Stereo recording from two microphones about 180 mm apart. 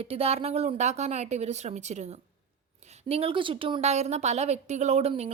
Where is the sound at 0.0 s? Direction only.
35° right (ahead or behind).